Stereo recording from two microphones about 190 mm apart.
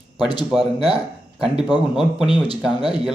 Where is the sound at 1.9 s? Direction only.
Centre (ahead or behind).